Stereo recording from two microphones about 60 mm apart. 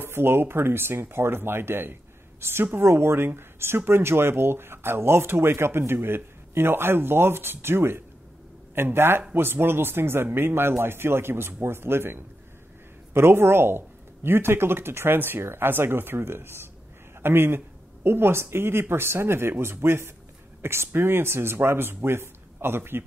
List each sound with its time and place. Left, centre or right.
0.0 s a man's voice: right